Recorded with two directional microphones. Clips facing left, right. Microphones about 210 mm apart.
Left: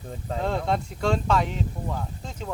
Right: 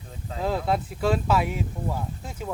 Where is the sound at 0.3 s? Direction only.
5° right (ahead or behind).